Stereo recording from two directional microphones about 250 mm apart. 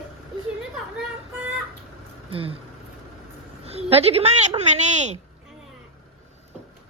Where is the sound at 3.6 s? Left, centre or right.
Right.